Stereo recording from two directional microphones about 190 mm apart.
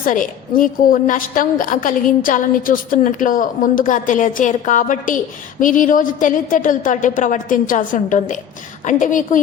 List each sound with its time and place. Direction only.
0.0 s a woman's voice: 45° left (ahead or behind)